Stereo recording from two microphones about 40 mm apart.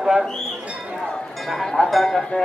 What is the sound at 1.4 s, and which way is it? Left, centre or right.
Speech, centre.